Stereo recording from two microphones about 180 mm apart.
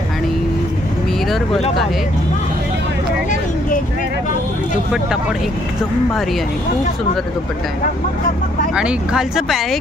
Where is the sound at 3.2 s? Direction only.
45° left (ahead or behind).